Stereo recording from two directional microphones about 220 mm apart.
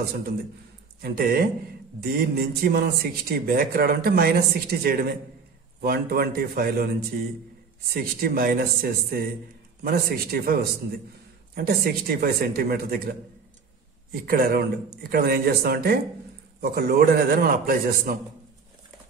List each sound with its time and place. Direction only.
1.0 s a man's voice: 40° right (ahead or behind)
7.9 s a man's voice: 45° right (ahead or behind)